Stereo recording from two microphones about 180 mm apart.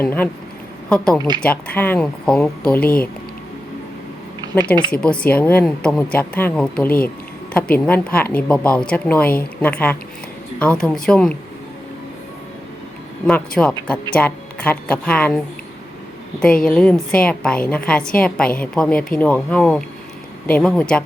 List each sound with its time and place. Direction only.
0.0 s a woman's voice: 10° left (ahead or behind)
4.4 s speech: 25° right (ahead or behind)
4.9 s a woman's voice: 5° left (ahead or behind)
13.2 s a woman's voice: 5° left (ahead or behind)
16.6 s a woman's voice: 5° left (ahead or behind)